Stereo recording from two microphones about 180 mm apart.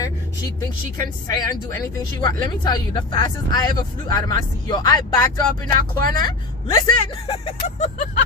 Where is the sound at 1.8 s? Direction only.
25° left (ahead or behind).